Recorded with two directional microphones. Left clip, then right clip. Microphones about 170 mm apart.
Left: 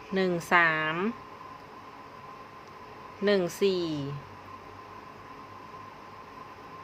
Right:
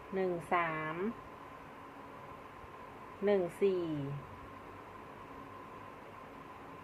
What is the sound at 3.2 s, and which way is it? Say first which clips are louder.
Speech: left 5 dB; 35° left (ahead or behind).